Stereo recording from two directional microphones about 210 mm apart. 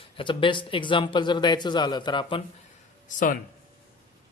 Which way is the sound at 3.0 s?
40° left (ahead or behind).